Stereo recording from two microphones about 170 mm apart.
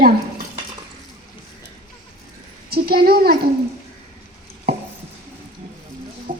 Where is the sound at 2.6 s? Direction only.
65° right (ahead or behind).